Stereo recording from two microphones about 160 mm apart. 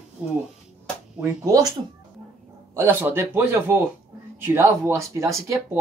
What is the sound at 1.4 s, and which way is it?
Speech, 25° right (ahead or behind).